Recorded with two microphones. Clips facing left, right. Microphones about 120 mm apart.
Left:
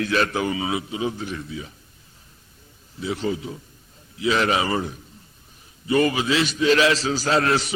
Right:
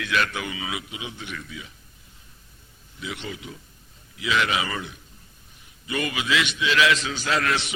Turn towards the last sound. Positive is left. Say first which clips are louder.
# left 5 dB
turn(degrees=35)  # may be behind; listen again after turning